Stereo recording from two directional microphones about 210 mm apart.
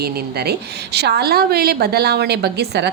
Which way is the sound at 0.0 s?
50° right (ahead or behind).